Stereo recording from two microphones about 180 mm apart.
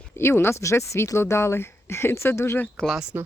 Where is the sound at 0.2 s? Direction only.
15° left (ahead or behind).